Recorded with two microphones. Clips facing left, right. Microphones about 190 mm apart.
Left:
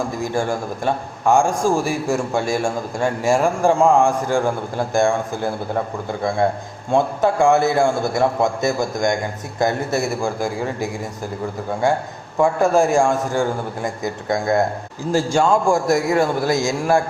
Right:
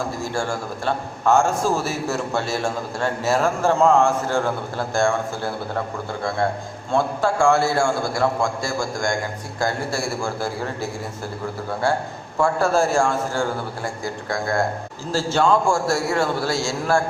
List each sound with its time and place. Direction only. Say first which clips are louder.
0.2 s a man's voice: left 4 dB; 15° left (ahead or behind)
12.4 s a man's voice: left 3 dB; 15° left (ahead or behind)